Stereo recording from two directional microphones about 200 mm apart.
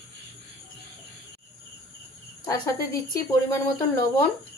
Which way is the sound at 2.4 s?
20° left (ahead or behind).